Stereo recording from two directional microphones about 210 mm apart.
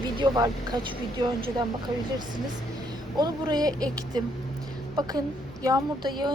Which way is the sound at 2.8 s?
20° right (ahead or behind).